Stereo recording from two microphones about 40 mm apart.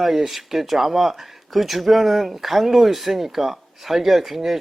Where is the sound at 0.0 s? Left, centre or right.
Centre.